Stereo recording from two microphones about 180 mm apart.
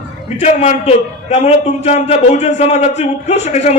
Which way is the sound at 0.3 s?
35° left (ahead or behind).